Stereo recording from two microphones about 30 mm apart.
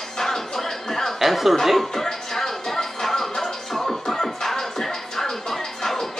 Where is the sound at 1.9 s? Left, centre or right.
Centre.